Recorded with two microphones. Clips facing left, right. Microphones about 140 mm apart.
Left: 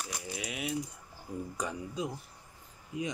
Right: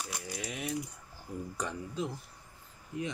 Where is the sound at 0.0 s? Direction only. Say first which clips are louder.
Even; centre (ahead or behind).